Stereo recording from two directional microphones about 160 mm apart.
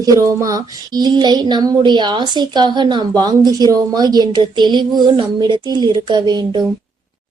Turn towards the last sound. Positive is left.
turn(degrees=-25)  # may be behind; listen again after turning